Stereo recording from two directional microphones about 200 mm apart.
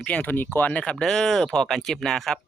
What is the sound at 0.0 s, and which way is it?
Speech, 5° left (ahead or behind).